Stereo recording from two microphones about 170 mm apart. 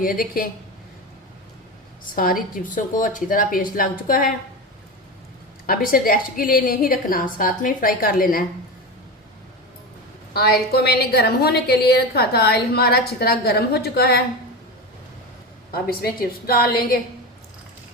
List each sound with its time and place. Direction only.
0.0 s a woman's voice: 55° left (ahead or behind)
2.1 s a woman's voice: 55° left (ahead or behind)
5.6 s a woman's voice: 60° left (ahead or behind)
10.3 s a woman's voice: 65° left (ahead or behind)
15.7 s a woman's voice: 60° left (ahead or behind)